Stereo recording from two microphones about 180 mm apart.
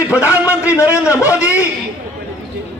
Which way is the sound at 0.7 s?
15° left (ahead or behind).